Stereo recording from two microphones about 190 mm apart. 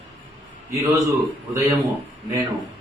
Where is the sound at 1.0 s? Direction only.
15° right (ahead or behind).